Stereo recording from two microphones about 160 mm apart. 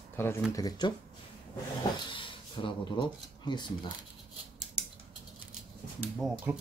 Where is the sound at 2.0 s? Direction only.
30° left (ahead or behind).